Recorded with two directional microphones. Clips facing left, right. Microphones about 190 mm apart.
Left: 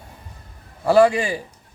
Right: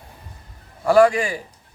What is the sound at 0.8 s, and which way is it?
Speech, 25° left (ahead or behind).